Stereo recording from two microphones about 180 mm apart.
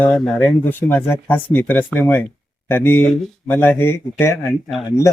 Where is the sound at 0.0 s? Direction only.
5° left (ahead or behind).